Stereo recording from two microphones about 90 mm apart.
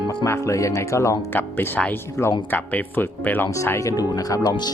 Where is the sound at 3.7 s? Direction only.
40° left (ahead or behind).